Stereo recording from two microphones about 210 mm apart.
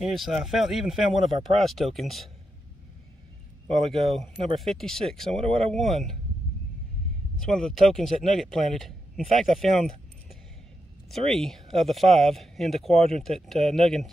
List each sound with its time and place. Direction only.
0.0 s speech: centre (ahead or behind)
3.7 s speech: centre (ahead or behind)
5.4 s speech: 30° right (ahead or behind)
5.7 s speech: centre (ahead or behind)
7.3 s speech: 5° left (ahead or behind)
11.1 s speech: centre (ahead or behind)